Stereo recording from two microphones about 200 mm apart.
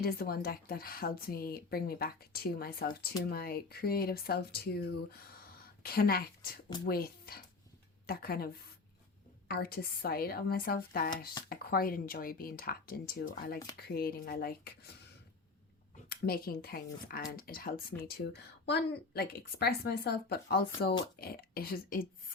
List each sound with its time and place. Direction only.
0.0 s a woman's voice: 50° left (ahead or behind)
9.5 s speech: 50° left (ahead or behind)
16.0 s speech: 50° left (ahead or behind)